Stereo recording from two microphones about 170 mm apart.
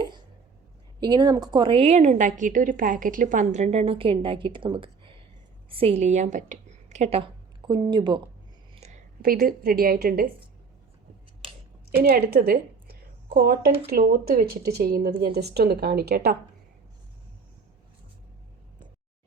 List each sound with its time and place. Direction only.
0.9 s a woman's voice: 25° right (ahead or behind)
7.7 s speech: 25° right (ahead or behind)
8.7 s a sound: 40° right (ahead or behind)
9.2 s a woman's voice: 60° right (ahead or behind)
11.9 s a woman's voice: 65° right (ahead or behind)